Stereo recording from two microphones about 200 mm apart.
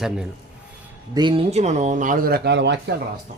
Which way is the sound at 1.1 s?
25° right (ahead or behind).